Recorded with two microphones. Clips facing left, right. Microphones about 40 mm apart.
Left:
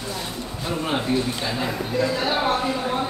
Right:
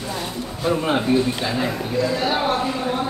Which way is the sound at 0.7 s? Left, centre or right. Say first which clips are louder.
Right 5 dB; centre.